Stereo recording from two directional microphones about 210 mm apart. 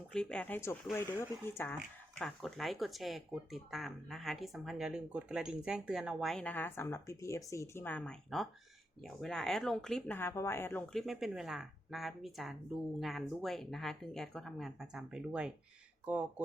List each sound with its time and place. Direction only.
0.1 s speech: 5° left (ahead or behind)